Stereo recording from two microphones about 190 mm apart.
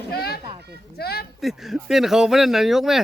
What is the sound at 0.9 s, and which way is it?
Speech, 55° left (ahead or behind).